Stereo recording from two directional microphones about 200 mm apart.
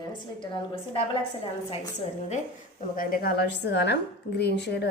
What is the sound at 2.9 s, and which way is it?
A woman's voice, 45° left (ahead or behind).